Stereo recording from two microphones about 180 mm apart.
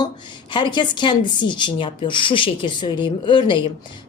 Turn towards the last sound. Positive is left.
turn(degrees=25)  # may be behind; listen again after turning